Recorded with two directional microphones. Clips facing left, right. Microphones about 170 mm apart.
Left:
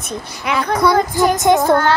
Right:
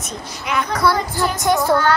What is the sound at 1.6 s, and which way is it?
Speech, 50° left (ahead or behind).